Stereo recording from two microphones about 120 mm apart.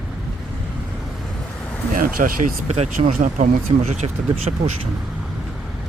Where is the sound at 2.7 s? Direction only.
80° right.